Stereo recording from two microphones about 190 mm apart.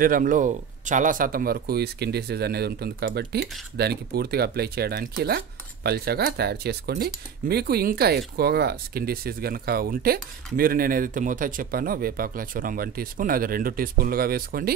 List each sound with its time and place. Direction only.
0.0 s speech: 45° right (ahead or behind)